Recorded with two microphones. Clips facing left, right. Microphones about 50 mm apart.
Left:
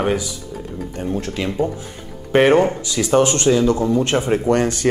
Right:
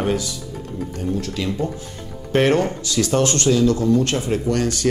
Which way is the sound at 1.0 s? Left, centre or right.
Left.